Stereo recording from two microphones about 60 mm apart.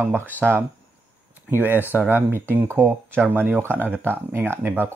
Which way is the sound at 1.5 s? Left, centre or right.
Right.